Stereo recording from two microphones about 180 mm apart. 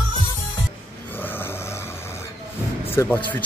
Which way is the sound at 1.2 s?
10° left (ahead or behind).